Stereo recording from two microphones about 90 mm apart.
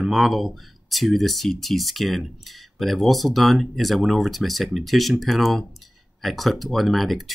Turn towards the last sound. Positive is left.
turn(degrees=0)  # may be behind; listen again after turning